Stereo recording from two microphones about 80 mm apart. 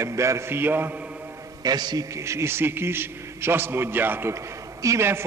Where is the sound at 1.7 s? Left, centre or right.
Right.